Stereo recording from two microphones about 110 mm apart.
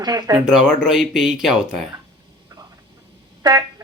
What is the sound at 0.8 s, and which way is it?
Speech, 5° right (ahead or behind).